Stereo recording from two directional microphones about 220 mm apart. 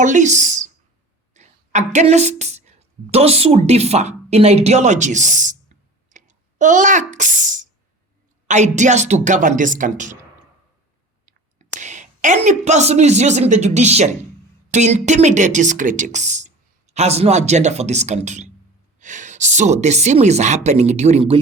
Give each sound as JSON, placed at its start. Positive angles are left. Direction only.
{"t": 0.0, "sound": "a woman's voice", "side_deg": -35}
{"t": 11.8, "sound": "a woman's voice", "side_deg": -35}